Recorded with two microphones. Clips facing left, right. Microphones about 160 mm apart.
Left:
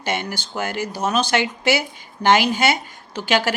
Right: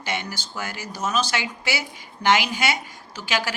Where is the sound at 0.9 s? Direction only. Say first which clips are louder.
Left 2 dB; 30° left (ahead or behind).